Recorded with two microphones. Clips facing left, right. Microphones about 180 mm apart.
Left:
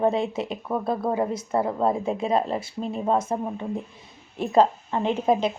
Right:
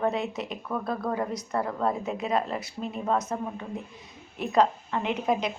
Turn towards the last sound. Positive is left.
turn(degrees=30)  # may be behind; listen again after turning